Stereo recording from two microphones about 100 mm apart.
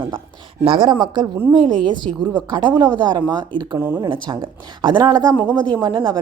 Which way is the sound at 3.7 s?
20° right (ahead or behind).